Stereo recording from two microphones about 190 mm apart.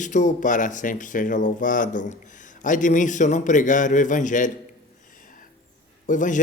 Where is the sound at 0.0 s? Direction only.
40° left (ahead or behind).